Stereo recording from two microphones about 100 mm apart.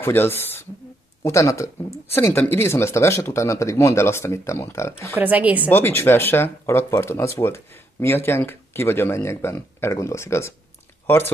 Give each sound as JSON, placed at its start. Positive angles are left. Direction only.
{"t": 0.0, "sound": "speech", "side_deg": 20}
{"t": 5.1, "sound": "speech", "side_deg": -15}
{"t": 5.7, "sound": "speech", "side_deg": 25}